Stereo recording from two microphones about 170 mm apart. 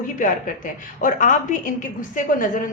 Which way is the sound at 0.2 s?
50° left (ahead or behind).